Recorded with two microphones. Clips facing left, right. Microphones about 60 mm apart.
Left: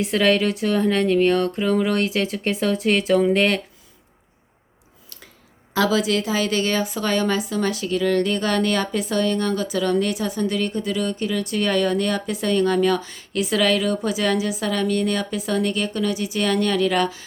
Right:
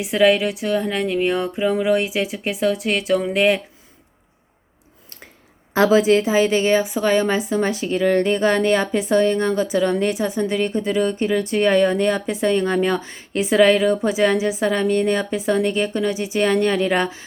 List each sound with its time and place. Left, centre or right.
0.0 s speech: centre
5.7 s a woman's voice: right